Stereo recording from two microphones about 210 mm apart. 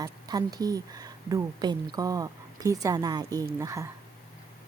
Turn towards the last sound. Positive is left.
turn(degrees=-15)  # may be behind; listen again after turning